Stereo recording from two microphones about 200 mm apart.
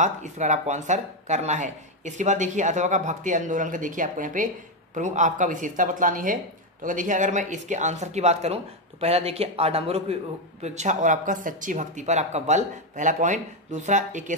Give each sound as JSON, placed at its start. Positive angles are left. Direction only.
{"t": 0.0, "sound": "speech", "side_deg": -35}